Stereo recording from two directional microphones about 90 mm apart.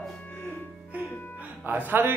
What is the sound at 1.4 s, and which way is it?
Music, 20° right (ahead or behind).